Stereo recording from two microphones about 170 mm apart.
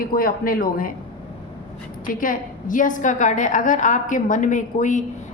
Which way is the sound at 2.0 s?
55° left (ahead or behind).